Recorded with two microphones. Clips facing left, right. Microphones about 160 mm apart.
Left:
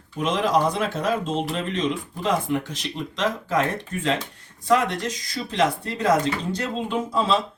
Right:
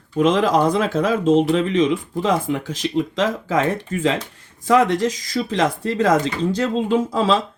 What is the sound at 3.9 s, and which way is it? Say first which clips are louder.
Speech: right 4 dB; 90° right.